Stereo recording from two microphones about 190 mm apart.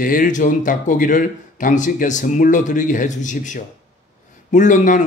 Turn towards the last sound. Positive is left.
turn(degrees=40)  # may be behind; listen again after turning